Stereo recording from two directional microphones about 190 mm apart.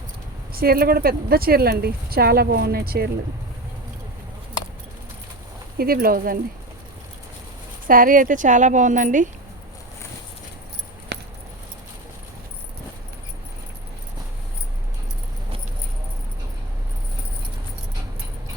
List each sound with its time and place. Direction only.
0.5 s speech: 50° right (ahead or behind)
5.7 s speech: 50° right (ahead or behind)
7.9 s speech: 45° right (ahead or behind)
11.1 s keys jangling: 60° right (ahead or behind)